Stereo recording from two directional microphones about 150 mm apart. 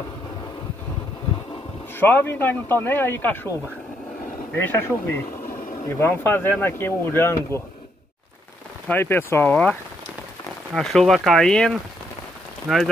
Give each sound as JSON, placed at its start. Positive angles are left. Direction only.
{"t": 2.0, "sound": "speech", "side_deg": 15}
{"t": 4.6, "sound": "speech", "side_deg": 15}
{"t": 8.8, "sound": "speech", "side_deg": 15}